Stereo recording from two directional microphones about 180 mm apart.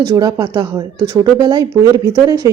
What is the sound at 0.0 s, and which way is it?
Speech, 20° right (ahead or behind).